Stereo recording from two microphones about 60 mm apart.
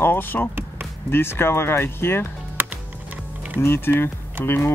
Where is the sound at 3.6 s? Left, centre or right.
Left.